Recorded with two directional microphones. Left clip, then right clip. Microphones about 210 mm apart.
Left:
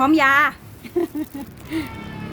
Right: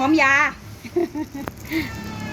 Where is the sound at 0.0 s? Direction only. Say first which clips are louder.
Left 1 dB; 15° left (ahead or behind).